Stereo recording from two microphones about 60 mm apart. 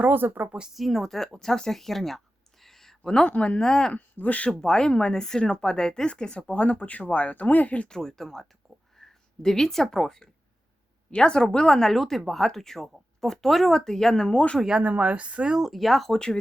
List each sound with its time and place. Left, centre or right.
0.0 s speech: right
0.7 s a woman's voice: centre; by 3.6 s left
3.6 s speech: centre
3.9 s speech: left
4.4 s speech: centre
7.9 s speech: centre
14.8 s speech: centre
16.1 s speech: centre